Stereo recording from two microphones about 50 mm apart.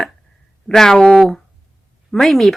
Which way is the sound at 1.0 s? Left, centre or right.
Centre.